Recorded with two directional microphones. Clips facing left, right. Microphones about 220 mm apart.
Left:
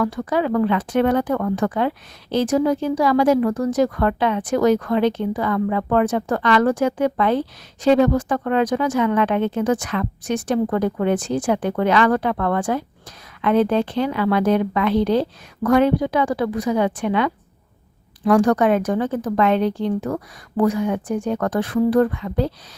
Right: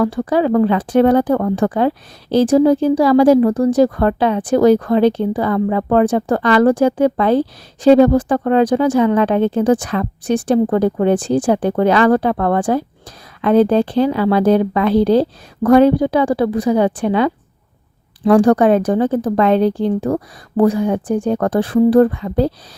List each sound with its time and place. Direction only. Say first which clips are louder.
0.0 s speech: right 5 dB; 30° right (ahead or behind)